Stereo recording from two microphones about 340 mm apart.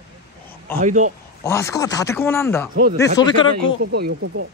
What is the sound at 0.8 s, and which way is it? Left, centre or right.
Speech, right.